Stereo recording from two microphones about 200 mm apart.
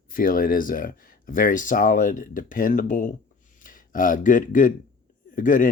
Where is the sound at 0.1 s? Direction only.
45° left (ahead or behind).